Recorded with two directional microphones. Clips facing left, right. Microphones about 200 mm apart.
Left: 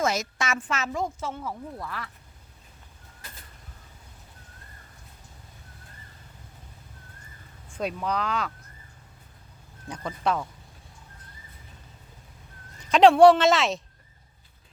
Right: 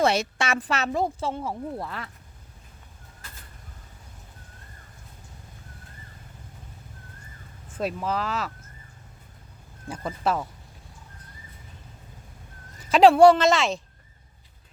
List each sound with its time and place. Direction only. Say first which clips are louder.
0.0 s a woman's voice: right 4 dB; 30° right (ahead or behind)
7.7 s a woman's voice: right 1 dB; 5° right (ahead or behind)
9.9 s speech: right 1 dB; 5° right (ahead or behind)
12.9 s a woman's voice: right 1 dB; centre (ahead or behind)